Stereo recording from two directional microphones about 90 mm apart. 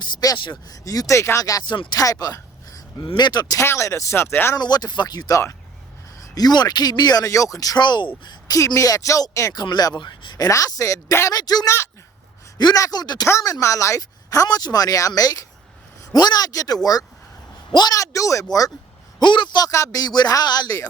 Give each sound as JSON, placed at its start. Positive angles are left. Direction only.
{"t": 0.0, "sound": "speech", "side_deg": 50}
{"t": 0.3, "sound": "speech", "side_deg": 60}
{"t": 0.7, "sound": "speech", "side_deg": 40}
{"t": 1.6, "sound": "speech", "side_deg": 60}
{"t": 2.0, "sound": "a sound", "side_deg": 40}
{"t": 3.1, "sound": "speech", "side_deg": 55}
{"t": 3.6, "sound": "speech", "side_deg": 30}
{"t": 4.5, "sound": "speech", "side_deg": 50}
{"t": 7.8, "sound": "speech", "side_deg": 55}
{"t": 8.5, "sound": "speech", "side_deg": 35}
{"t": 11.3, "sound": "speech", "side_deg": 45}
{"t": 13.2, "sound": "speech", "side_deg": 35}
{"t": 19.2, "sound": "speech", "side_deg": 60}
{"t": 19.6, "sound": "speech", "side_deg": 40}